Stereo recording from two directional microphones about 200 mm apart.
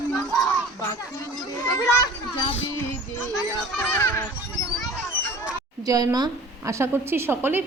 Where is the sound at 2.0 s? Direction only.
20° left (ahead or behind).